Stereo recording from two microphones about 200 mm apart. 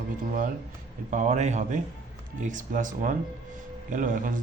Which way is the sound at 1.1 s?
40° right (ahead or behind).